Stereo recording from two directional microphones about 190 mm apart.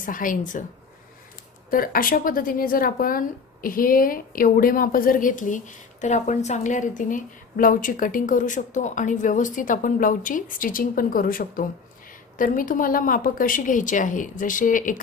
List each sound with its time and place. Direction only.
0.0 s speech: 45° left (ahead or behind)
1.7 s speech: 50° left (ahead or behind)